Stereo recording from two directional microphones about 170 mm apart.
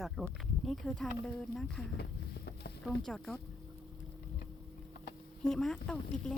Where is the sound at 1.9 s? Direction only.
75° left (ahead or behind).